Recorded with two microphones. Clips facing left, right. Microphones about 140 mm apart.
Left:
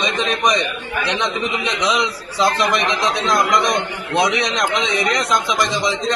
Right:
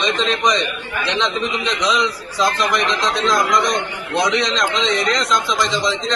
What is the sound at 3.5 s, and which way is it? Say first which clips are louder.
A man's voice: even; 60° left (ahead or behind).